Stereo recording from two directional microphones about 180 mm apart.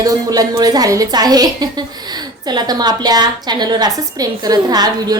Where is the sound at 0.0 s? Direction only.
20° right (ahead or behind).